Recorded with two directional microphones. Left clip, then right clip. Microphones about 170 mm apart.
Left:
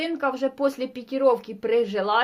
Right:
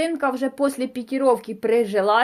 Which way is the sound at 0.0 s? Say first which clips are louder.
Right 3 dB; 35° right (ahead or behind).